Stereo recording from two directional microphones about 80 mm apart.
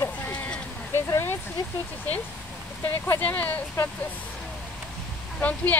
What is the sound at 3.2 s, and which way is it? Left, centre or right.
Speech, centre.